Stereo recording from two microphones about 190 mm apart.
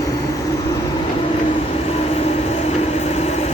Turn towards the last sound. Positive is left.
turn(degrees=35)  # may be behind; listen again after turning